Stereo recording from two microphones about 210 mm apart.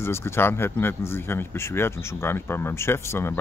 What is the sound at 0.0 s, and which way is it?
Speech, 10° left (ahead or behind).